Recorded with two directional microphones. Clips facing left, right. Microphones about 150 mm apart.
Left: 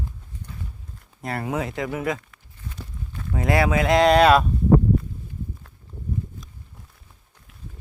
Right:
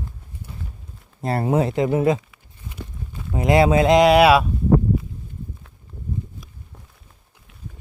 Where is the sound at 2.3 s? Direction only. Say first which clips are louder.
Even; 10° right (ahead or behind).